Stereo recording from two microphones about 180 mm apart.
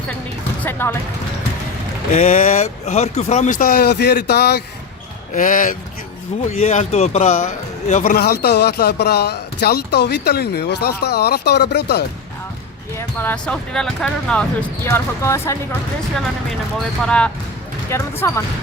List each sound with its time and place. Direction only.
0.6 s speech: 10° left (ahead or behind)
2.1 s a man's voice: 45° left (ahead or behind); by 4.6 s 60° left (ahead or behind)
5.3 s a man's voice: 45° left (ahead or behind); by 12.0 s 65° left (ahead or behind)
13.0 s speech: 10° left (ahead or behind)
16.1 s speech: centre (ahead or behind)